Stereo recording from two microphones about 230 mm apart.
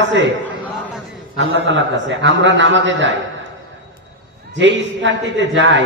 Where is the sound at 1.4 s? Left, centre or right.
Right.